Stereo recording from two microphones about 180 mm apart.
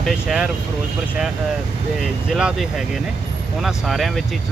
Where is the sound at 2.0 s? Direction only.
Centre (ahead or behind).